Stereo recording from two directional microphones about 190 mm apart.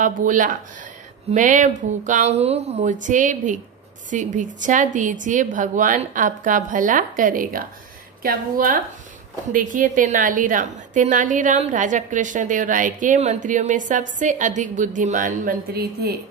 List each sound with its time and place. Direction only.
0.0 s a woman's voice: 45° right (ahead or behind)